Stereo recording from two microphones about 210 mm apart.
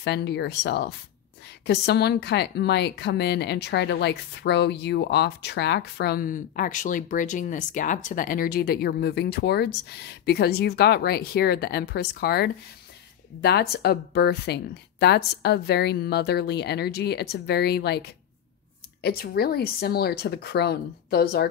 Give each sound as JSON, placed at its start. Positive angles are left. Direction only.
{"t": 0.0, "sound": "speech", "side_deg": 55}